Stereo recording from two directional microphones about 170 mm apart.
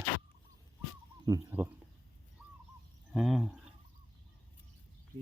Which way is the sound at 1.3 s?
20° right (ahead or behind).